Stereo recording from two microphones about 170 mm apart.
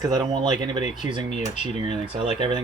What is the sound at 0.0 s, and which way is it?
Speech, 25° right (ahead or behind).